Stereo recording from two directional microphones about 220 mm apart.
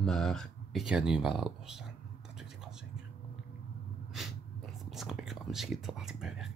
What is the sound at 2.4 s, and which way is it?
Whispering, 5° right (ahead or behind).